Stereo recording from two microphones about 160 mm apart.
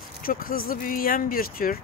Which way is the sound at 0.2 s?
65° left (ahead or behind).